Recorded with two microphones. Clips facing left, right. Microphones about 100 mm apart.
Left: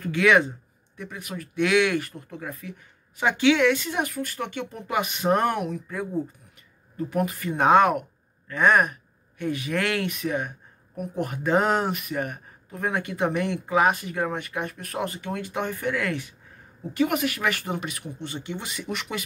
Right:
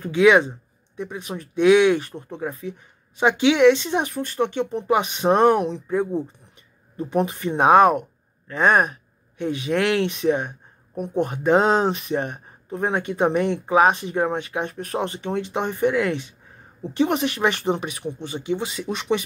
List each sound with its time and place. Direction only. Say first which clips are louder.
0.0 s speech: right 4 dB; 15° right (ahead or behind)